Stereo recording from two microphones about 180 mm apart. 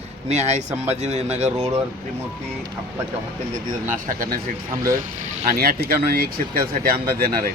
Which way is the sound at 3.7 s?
45° right (ahead or behind).